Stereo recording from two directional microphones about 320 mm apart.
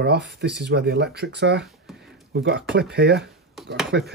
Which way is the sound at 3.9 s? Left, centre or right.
Right.